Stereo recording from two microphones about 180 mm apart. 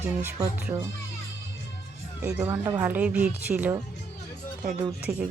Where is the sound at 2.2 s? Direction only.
10° right (ahead or behind).